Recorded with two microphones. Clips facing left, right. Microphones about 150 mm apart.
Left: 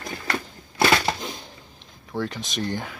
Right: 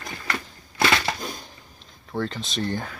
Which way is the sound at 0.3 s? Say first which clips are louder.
Left 2 dB; 30° left (ahead or behind).